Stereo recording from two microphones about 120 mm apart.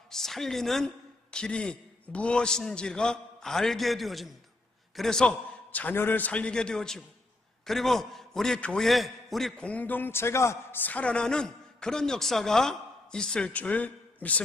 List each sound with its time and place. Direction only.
0.1 s a man's voice: 5° left (ahead or behind)